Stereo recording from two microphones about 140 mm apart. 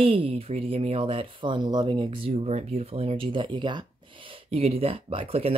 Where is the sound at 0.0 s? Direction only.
40° right (ahead or behind).